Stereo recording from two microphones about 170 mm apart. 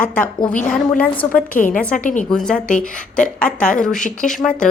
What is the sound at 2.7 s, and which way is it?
Speech, 50° left (ahead or behind).